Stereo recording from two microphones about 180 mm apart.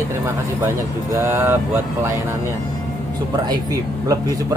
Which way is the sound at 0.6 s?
15° right (ahead or behind).